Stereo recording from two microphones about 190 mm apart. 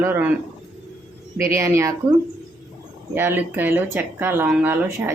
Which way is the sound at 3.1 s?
10° right (ahead or behind).